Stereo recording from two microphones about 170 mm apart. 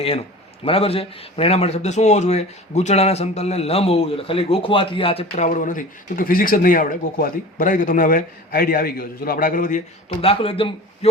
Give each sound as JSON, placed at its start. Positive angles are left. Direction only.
{"t": 0.0, "sound": "a man's voice", "side_deg": 35}
{"t": 5.5, "sound": "speech", "side_deg": 50}